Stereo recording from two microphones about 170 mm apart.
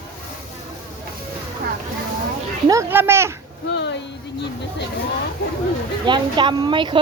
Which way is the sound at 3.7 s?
90° left.